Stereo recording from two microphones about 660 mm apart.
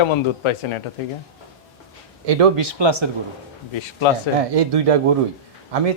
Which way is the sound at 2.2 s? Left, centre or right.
Right.